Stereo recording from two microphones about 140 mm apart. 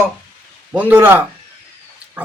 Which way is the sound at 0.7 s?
10° right (ahead or behind).